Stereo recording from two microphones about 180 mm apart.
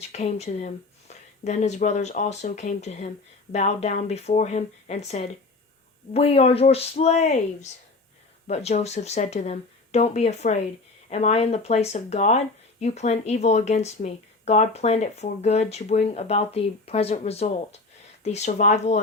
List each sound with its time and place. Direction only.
0.0 s speech: 35° left (ahead or behind)